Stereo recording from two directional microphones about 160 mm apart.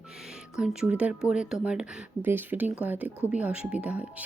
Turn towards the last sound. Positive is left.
turn(degrees=-10)  # may be behind; listen again after turning